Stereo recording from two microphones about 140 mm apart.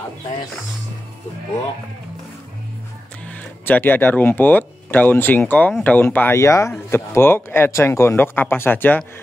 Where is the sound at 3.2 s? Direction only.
10° left (ahead or behind).